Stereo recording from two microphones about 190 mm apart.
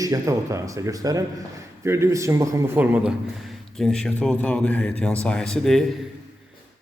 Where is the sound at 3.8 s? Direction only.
5° left (ahead or behind).